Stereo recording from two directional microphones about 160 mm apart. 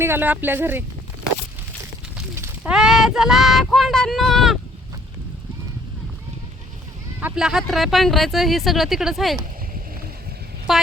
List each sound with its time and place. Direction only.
0.0 s speech: 15° right (ahead or behind)
2.3 s a sound: 15° right (ahead or behind)
2.7 s speech: 5° right (ahead or behind)
7.2 s speech: 10° right (ahead or behind)
10.7 s speech: centre (ahead or behind)